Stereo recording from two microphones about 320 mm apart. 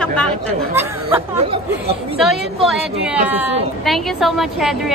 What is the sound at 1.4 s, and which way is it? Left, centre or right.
Speech, centre.